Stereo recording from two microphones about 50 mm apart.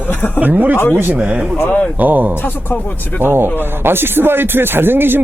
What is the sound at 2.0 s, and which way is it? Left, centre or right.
Speech, right.